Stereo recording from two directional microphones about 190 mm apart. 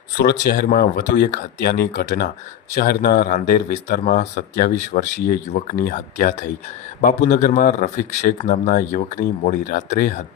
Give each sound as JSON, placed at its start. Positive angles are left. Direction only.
{"t": 0.2, "sound": "a man's voice", "side_deg": 50}